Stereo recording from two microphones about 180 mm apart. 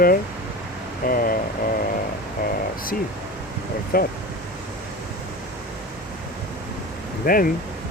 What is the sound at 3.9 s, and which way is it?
Speech, 55° left (ahead or behind).